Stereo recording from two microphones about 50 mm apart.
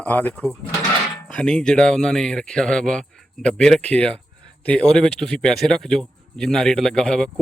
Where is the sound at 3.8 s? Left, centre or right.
Left.